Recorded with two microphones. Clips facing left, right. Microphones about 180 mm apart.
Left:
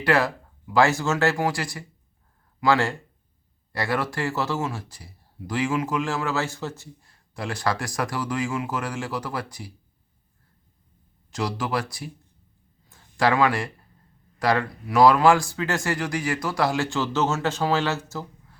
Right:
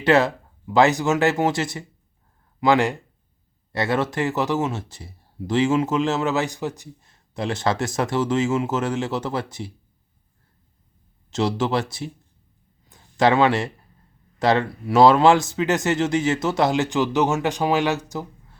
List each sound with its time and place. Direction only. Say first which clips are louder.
0.0 s speech: right 4 dB; 20° right (ahead or behind)
11.3 s speech: right 5 dB; 25° right (ahead or behind)
12.9 s a sound: right 4 dB; 20° right (ahead or behind)
14.3 s speech: right 3 dB; 25° right (ahead or behind)